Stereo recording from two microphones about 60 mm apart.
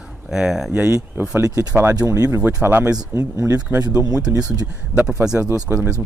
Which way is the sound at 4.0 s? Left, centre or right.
Right.